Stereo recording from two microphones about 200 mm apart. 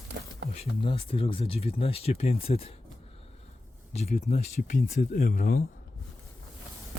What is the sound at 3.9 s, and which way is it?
Speech, 30° left (ahead or behind).